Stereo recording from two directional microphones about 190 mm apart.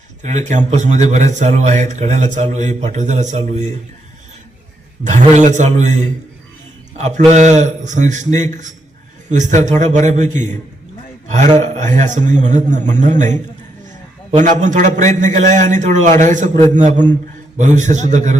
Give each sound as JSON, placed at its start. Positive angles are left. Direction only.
{"t": 0.2, "sound": "a man's voice", "side_deg": -40}
{"t": 5.0, "sound": "a man's voice", "side_deg": -40}
{"t": 7.0, "sound": "a man's voice", "side_deg": -35}
{"t": 14.3, "sound": "a man's voice", "side_deg": -40}